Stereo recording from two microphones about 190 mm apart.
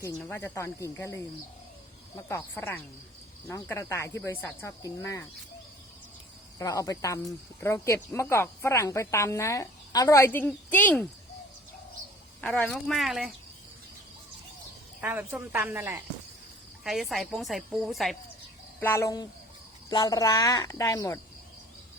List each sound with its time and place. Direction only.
0.0 s speech: 10° left (ahead or behind)
6.6 s speech: 20° left (ahead or behind)
12.4 s speech: 5° left (ahead or behind)
15.0 s a woman's voice: 10° right (ahead or behind)
16.8 s speech: centre (ahead or behind)
18.8 s speech: 15° left (ahead or behind)